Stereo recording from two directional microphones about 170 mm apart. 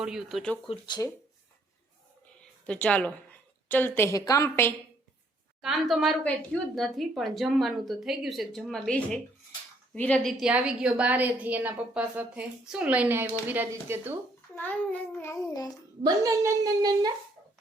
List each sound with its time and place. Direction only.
0.0 s speech: 5° right (ahead or behind)
0.7 s speech: 25° left (ahead or behind)
2.6 s a woman's voice: 5° left (ahead or behind)
5.6 s a child's voice: centre (ahead or behind)
10.4 s a woman's voice: 5° right (ahead or behind)
14.5 s a child's voice: 10° left (ahead or behind)
16.0 s a woman's voice: 20° right (ahead or behind)